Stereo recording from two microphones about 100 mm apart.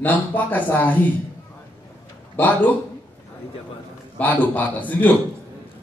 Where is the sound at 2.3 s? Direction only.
15° left (ahead or behind).